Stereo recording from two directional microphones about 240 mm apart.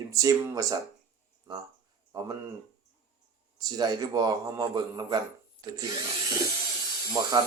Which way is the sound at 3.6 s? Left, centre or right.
Centre.